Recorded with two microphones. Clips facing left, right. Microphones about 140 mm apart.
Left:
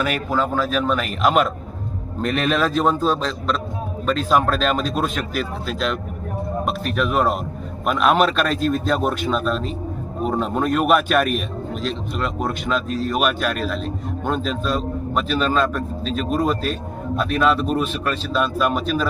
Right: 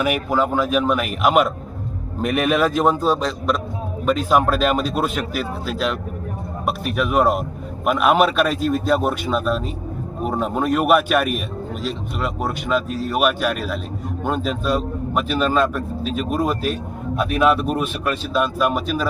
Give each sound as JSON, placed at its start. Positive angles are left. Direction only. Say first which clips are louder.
{"t": 0.0, "sound": "speech", "louder": "right 2 dB", "side_deg": -15}